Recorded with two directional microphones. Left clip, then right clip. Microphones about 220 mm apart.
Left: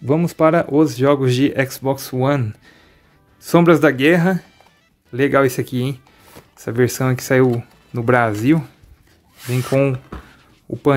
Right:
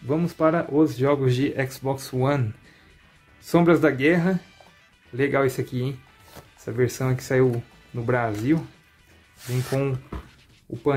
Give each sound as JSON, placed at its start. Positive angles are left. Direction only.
{"t": 0.0, "sound": "speech", "side_deg": 35}
{"t": 3.4, "sound": "speech", "side_deg": 35}